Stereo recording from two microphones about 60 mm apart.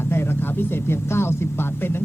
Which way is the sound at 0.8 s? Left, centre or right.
Left.